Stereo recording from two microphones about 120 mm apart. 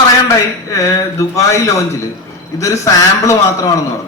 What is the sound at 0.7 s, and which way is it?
A man's voice, 25° left (ahead or behind).